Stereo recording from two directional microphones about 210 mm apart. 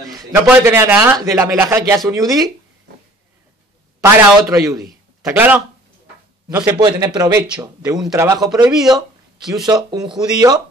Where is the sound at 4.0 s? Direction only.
10° right (ahead or behind).